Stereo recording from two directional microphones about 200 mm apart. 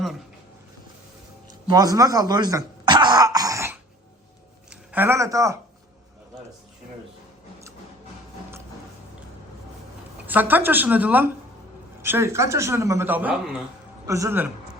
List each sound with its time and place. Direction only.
1.5 s cough: 20° right (ahead or behind)
4.7 s speech: 10° right (ahead or behind)
10.2 s speech: 10° right (ahead or behind)